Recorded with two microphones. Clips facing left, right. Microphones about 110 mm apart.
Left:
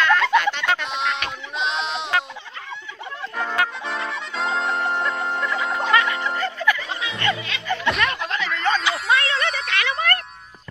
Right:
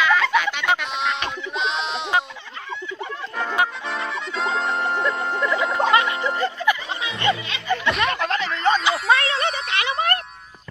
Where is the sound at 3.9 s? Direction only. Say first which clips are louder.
Right 1 dB; centre (ahead or behind).